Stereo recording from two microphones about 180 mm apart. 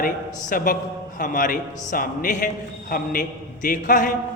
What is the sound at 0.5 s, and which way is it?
A man's voice, 50° left (ahead or behind).